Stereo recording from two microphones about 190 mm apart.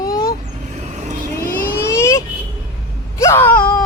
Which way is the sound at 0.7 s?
35° right (ahead or behind).